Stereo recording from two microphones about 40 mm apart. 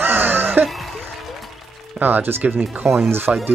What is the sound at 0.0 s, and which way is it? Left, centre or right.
Music, right.